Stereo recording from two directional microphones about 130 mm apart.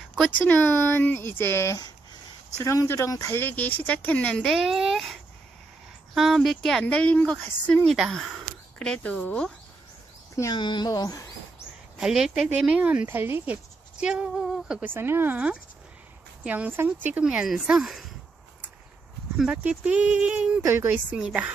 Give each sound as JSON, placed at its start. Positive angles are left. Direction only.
{"t": 0.4, "sound": "speech", "side_deg": 10}
{"t": 7.9, "sound": "speech", "side_deg": 0}
{"t": 10.3, "sound": "speech", "side_deg": 30}
{"t": 12.0, "sound": "speech", "side_deg": -5}
{"t": 19.3, "sound": "speech", "side_deg": -5}